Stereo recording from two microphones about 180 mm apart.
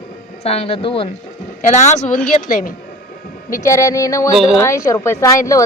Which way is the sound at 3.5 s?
15° left (ahead or behind).